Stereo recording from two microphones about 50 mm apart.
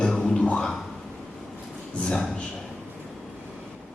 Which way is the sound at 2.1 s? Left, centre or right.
Centre.